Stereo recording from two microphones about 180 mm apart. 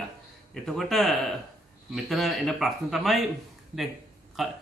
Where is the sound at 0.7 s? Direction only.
Centre (ahead or behind).